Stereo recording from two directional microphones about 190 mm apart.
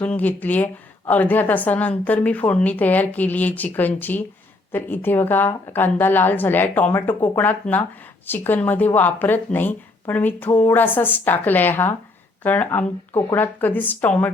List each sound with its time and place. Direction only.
0.0 s a woman's voice: 10° left (ahead or behind)